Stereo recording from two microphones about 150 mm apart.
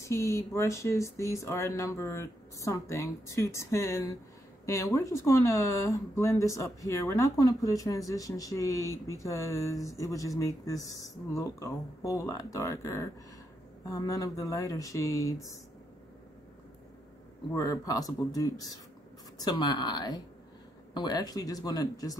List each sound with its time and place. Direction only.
0.1 s speech: 20° left (ahead or behind)
17.6 s speech: 20° left (ahead or behind)